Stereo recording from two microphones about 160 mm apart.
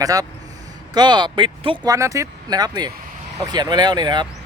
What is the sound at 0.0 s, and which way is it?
Speech, 20° right (ahead or behind).